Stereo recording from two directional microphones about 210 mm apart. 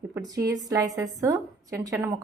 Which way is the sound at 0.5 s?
15° right (ahead or behind).